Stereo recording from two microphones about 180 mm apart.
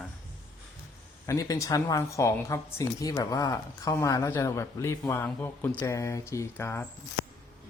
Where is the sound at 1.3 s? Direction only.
20° left (ahead or behind).